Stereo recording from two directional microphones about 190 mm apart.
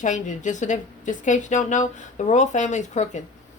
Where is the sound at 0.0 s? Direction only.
40° left (ahead or behind).